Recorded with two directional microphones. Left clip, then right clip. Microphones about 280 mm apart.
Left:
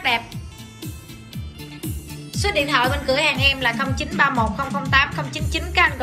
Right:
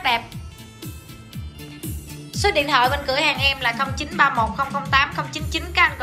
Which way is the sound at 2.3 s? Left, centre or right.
Centre.